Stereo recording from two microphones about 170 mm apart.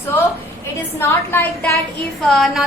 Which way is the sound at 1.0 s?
15° left (ahead or behind).